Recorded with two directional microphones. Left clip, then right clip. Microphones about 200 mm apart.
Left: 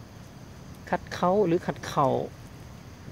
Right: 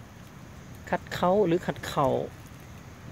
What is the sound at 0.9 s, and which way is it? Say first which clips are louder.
Speech: even; centre (ahead or behind).